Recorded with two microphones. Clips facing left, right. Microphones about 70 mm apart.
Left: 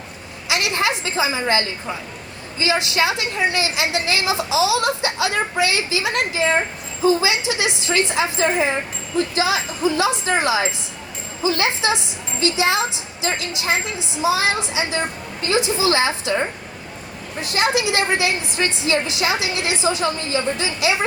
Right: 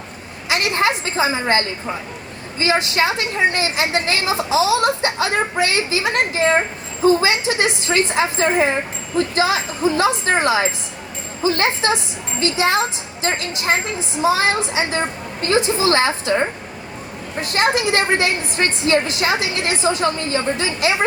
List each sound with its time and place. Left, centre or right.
0.4 s a woman's voice: right
17.4 s a woman's voice: right